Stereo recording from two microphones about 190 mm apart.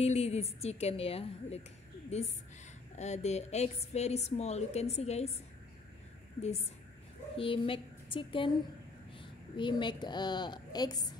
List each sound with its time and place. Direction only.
0.0 s a woman's voice: 35° left (ahead or behind)
7.3 s a woman's voice: 30° left (ahead or behind)